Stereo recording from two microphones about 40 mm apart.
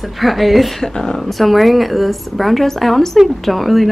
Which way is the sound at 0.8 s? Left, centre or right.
Centre.